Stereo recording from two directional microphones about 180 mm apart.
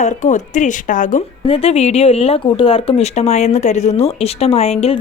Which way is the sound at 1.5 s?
35° left (ahead or behind).